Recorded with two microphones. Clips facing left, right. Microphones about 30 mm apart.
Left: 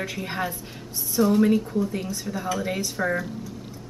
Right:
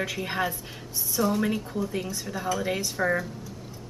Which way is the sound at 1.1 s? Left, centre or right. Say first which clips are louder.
Left 6 dB; centre.